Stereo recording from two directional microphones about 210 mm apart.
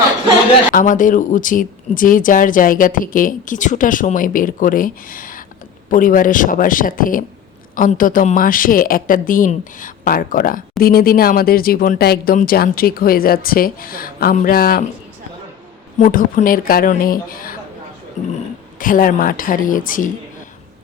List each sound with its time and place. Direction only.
0.7 s a woman's voice: 40° left (ahead or behind)
16.0 s a woman's voice: 40° left (ahead or behind)